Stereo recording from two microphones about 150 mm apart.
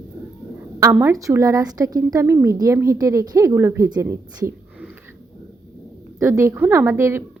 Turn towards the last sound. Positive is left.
turn(degrees=-15)  # may be behind; listen again after turning